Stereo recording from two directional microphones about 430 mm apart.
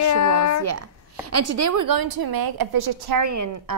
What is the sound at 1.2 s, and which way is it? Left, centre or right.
A woman's voice, right.